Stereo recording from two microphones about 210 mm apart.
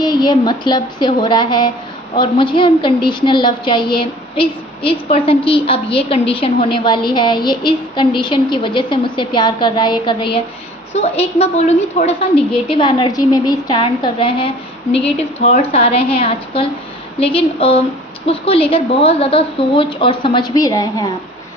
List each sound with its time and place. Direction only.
0.0 s a woman's voice: 20° left (ahead or behind)